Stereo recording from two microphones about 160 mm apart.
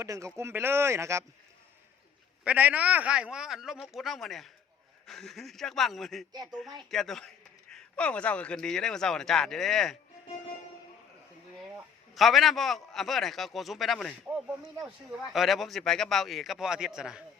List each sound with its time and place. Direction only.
0.0 s speech: 20° right (ahead or behind)
2.4 s a man's voice: 10° right (ahead or behind)
12.1 s a man's voice: centre (ahead or behind)